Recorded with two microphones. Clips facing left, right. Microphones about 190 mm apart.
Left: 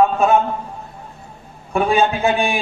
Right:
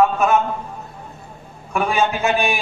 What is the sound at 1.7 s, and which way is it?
Speech, 30° left (ahead or behind).